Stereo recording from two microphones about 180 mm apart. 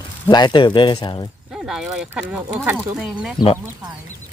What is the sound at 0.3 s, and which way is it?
Speech, 25° left (ahead or behind).